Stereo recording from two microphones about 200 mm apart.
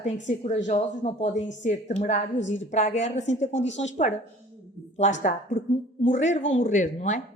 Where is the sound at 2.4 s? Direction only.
65° left (ahead or behind).